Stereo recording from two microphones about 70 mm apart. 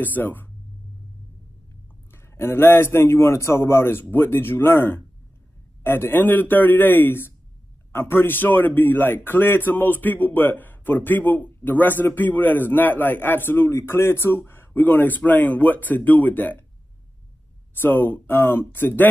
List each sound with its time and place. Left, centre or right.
0.0 s speech: left
2.1 s a man's voice: left
17.7 s speech: left